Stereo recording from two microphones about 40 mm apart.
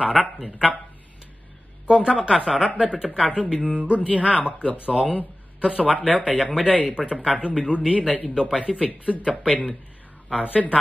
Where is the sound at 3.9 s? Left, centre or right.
Left.